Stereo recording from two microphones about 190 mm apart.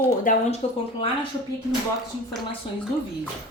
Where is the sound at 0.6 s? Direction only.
35° left (ahead or behind).